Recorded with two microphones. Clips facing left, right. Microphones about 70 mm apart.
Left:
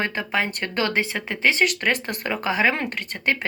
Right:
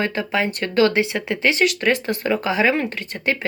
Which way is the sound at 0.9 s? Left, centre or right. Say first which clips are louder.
Right 4 dB; left.